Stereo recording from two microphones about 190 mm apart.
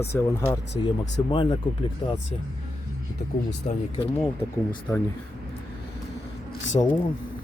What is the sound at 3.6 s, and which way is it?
Speech, 40° left (ahead or behind).